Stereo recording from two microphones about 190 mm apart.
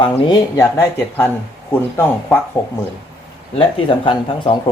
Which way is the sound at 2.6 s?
15° left (ahead or behind).